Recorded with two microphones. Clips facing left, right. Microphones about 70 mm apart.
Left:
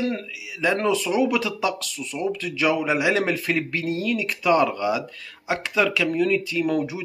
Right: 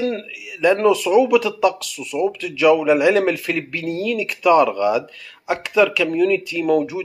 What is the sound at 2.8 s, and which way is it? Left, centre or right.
Speech, centre.